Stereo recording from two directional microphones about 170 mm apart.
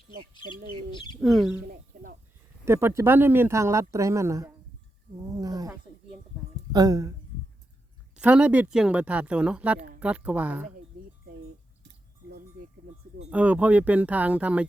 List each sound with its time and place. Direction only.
1.2 s speech: centre (ahead or behind)
1.6 s a sound: 60° right (ahead or behind)
2.6 s speech: 15° right (ahead or behind)
6.7 s speech: 20° right (ahead or behind)
8.1 s speech: 5° right (ahead or behind)
13.3 s speech: 10° right (ahead or behind)